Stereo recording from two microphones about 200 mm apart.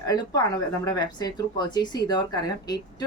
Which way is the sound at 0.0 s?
20° left (ahead or behind).